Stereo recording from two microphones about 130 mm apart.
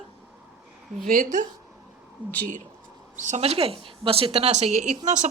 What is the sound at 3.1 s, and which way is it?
Speech, 70° right (ahead or behind).